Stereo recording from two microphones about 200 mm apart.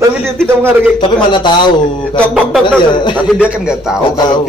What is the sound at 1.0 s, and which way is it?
Speech, 25° left (ahead or behind).